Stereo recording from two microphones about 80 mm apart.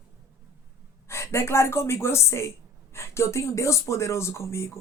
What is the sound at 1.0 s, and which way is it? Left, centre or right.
Speech, left.